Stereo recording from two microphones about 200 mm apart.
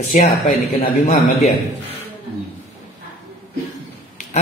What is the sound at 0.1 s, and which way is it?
Speech, 40° left (ahead or behind).